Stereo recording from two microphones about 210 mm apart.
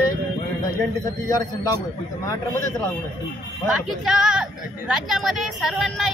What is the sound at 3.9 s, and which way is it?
Speech, centre (ahead or behind).